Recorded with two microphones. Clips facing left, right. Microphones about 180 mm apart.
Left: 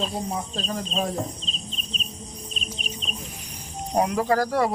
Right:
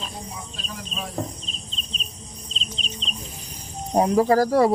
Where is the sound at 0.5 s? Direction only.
45° left (ahead or behind).